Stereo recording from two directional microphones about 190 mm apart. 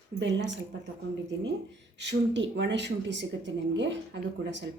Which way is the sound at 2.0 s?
70° right (ahead or behind).